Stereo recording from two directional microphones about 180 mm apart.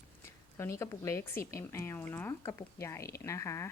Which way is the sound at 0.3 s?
15° left (ahead or behind).